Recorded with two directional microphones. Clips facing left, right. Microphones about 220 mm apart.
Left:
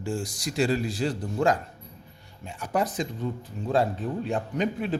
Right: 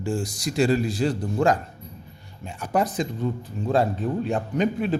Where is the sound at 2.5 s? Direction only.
45° right (ahead or behind).